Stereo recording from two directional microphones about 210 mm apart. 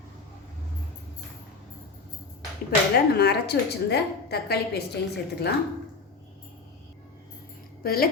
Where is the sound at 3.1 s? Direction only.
50° left (ahead or behind).